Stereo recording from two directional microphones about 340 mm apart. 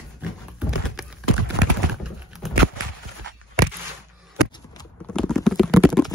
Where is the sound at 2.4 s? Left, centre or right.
Centre.